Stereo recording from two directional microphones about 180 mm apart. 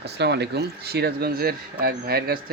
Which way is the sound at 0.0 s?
70° right (ahead or behind).